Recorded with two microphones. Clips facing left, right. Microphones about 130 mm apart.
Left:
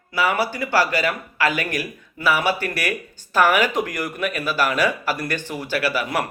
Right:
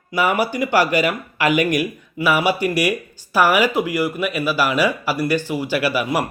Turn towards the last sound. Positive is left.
turn(degrees=-10)  # may be behind; listen again after turning